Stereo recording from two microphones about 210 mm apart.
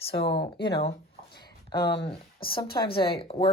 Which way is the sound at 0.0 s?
25° left (ahead or behind).